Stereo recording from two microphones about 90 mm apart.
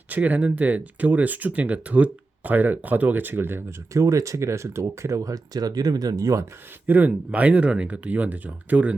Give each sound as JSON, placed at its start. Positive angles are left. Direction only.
{"t": 0.1, "sound": "speech", "side_deg": -15}
{"t": 6.8, "sound": "speech", "side_deg": -20}